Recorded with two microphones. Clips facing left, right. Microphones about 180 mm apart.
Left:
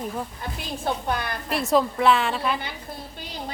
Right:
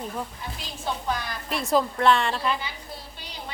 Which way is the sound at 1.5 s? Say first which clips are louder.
Left 2 dB; centre (ahead or behind).